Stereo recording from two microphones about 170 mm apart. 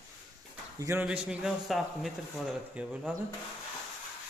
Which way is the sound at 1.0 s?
5° right (ahead or behind).